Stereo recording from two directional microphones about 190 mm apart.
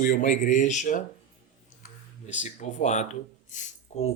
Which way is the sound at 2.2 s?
40° left (ahead or behind).